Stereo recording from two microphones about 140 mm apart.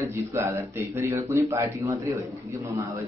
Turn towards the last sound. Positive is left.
turn(degrees=-20)  # may be behind; listen again after turning